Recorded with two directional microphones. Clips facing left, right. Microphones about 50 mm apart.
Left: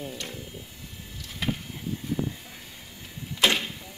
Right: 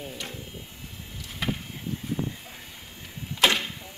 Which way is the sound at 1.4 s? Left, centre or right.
Centre.